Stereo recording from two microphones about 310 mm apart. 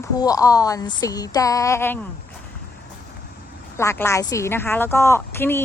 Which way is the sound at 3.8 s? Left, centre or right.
Centre.